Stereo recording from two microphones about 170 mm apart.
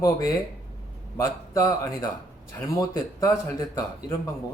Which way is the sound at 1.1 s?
15° left (ahead or behind).